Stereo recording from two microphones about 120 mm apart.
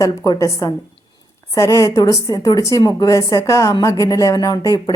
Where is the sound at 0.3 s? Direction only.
25° left (ahead or behind).